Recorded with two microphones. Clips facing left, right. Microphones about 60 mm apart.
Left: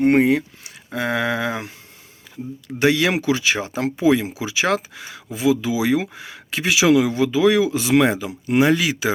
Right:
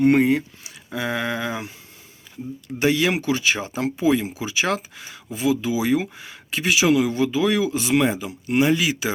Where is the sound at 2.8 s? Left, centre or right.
Left.